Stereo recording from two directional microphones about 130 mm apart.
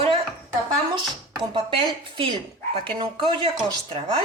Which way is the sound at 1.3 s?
40° right (ahead or behind).